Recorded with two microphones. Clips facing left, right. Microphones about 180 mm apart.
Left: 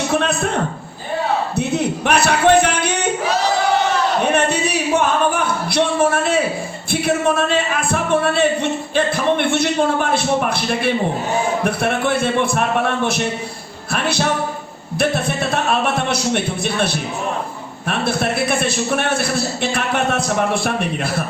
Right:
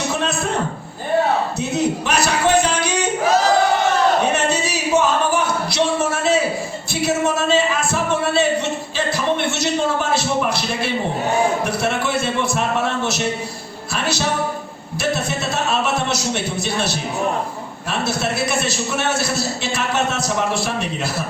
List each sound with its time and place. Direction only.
0.1 s a sound: 60° left (ahead or behind)
1.5 s music: 60° left (ahead or behind)
4.4 s singing: 60° left (ahead or behind)
6.9 s a man's voice: 55° left (ahead or behind)
13.9 s music: 55° left (ahead or behind)
14.9 s a man's voice: 55° left (ahead or behind)